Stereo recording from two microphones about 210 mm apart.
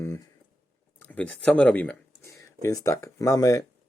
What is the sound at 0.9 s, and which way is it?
Speech, 5° left (ahead or behind).